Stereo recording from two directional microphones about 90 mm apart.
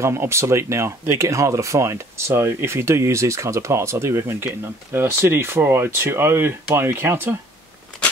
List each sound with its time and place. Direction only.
0.0 s speech: 30° right (ahead or behind)